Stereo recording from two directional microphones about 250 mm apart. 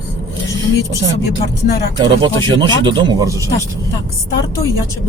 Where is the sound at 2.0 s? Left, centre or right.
Centre.